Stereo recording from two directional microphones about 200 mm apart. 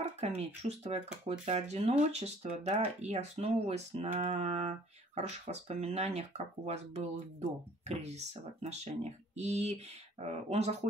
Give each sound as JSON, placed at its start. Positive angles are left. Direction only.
{"t": 0.2, "sound": "speech", "side_deg": -30}